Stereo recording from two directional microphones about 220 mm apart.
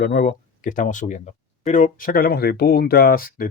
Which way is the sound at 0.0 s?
45° left (ahead or behind).